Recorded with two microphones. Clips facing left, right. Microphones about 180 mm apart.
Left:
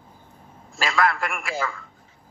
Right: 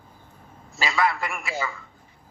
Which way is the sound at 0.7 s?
Centre (ahead or behind).